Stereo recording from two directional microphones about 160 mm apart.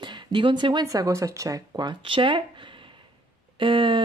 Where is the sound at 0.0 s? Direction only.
30° right (ahead or behind).